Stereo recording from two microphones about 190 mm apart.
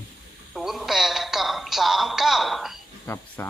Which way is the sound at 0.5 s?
Centre (ahead or behind).